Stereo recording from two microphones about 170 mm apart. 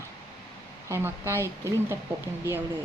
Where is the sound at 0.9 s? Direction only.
15° right (ahead or behind).